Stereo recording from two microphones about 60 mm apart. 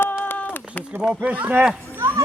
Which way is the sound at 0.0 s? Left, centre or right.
Left.